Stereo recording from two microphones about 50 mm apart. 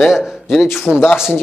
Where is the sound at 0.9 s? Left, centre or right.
Right.